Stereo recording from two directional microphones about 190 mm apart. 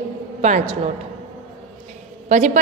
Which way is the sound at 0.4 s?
40° right (ahead or behind).